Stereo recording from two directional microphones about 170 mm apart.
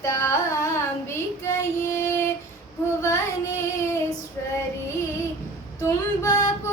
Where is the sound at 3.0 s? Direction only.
15° left (ahead or behind).